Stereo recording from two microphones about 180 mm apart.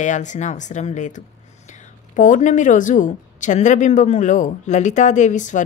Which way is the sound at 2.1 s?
45° left (ahead or behind).